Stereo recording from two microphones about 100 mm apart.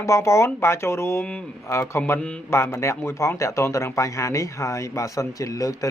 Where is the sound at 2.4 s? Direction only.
25° left (ahead or behind).